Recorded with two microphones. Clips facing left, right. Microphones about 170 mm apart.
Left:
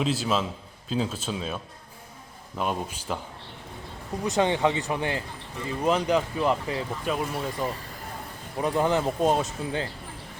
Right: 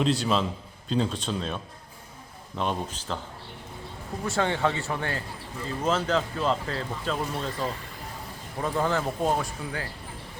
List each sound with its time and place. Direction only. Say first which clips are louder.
0.0 s a man's voice: right 1 dB; centre (ahead or behind)
4.2 s speech: left 3 dB; 20° left (ahead or behind)